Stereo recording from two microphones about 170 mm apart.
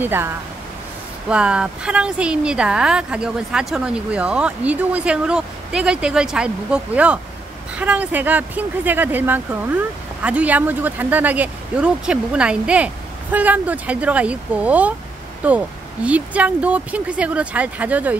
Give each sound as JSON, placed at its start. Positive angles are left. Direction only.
{"t": 0.0, "sound": "speech", "side_deg": -15}
{"t": 1.3, "sound": "speech", "side_deg": -5}